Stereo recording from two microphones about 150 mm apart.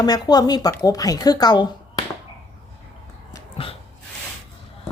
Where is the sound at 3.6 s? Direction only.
40° left (ahead or behind).